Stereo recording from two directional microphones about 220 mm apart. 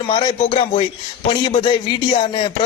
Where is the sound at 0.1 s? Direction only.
25° left (ahead or behind).